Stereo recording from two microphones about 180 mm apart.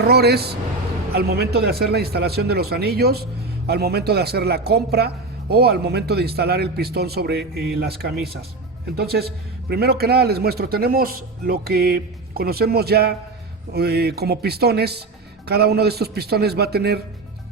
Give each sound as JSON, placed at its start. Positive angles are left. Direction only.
{"t": 0.1, "sound": "a man's voice", "side_deg": -65}